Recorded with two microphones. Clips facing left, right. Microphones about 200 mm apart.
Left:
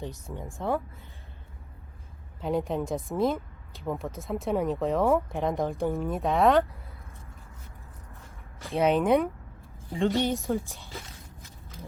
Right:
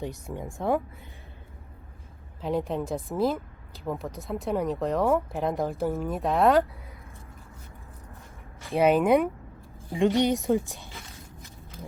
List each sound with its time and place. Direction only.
0.5 s speech: 15° right (ahead or behind)
2.4 s speech: centre (ahead or behind)
8.7 s speech: 5° right (ahead or behind)
9.9 s speech: 15° right (ahead or behind)